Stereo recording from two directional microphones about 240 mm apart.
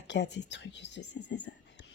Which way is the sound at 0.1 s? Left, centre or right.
Left.